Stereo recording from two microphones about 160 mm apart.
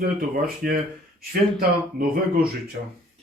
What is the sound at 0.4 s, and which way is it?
Speech, 65° right (ahead or behind).